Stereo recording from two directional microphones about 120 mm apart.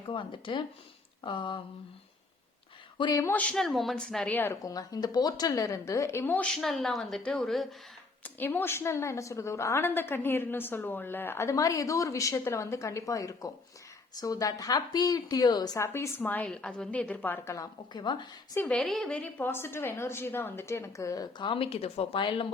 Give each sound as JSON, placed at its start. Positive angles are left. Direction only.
{"t": 0.0, "sound": "speech", "side_deg": 45}
{"t": 3.0, "sound": "a woman's voice", "side_deg": 30}
{"t": 3.5, "sound": "a woman's voice", "side_deg": 0}
{"t": 4.3, "sound": "a woman's voice", "side_deg": 15}
{"t": 4.6, "sound": "a woman's voice", "side_deg": 30}
{"t": 8.2, "sound": "a woman's voice", "side_deg": 15}
{"t": 15.9, "sound": "a woman's voice", "side_deg": 20}
{"t": 18.6, "sound": "a woman's voice", "side_deg": 5}